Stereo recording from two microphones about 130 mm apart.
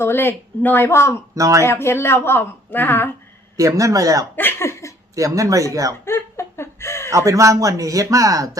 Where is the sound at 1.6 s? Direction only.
20° left (ahead or behind).